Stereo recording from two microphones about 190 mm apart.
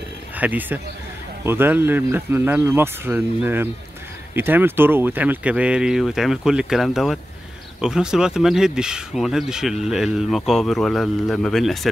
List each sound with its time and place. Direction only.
0.4 s speech: 10° right (ahead or behind)